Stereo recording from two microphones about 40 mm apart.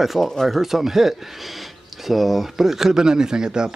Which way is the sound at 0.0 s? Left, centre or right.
Centre.